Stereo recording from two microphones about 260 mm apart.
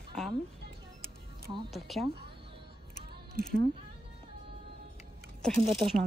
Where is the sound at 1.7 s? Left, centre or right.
Centre.